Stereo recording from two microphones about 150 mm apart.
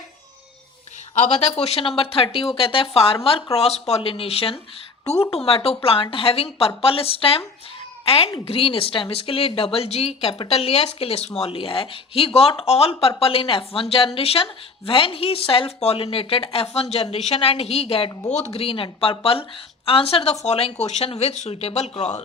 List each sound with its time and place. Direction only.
1.1 s speech: 45° left (ahead or behind)